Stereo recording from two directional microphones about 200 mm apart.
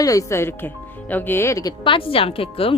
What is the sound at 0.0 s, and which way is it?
Speech, 15° left (ahead or behind).